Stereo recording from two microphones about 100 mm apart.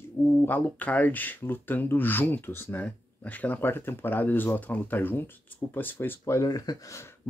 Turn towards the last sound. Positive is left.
turn(degrees=35)  # may be behind; listen again after turning